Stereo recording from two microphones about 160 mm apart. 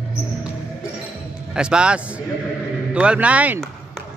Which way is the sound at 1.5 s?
5° right (ahead or behind).